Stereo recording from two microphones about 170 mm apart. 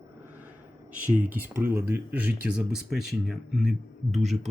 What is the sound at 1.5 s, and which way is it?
Speech, 15° right (ahead or behind).